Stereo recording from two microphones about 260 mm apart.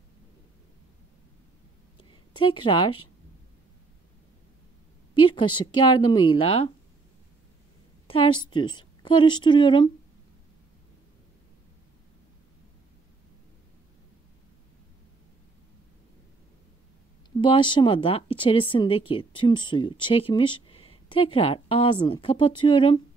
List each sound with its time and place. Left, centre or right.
2.0 s a sound: centre
5.3 s speech: centre
8.1 s a woman's voice: centre
17.4 s speech: centre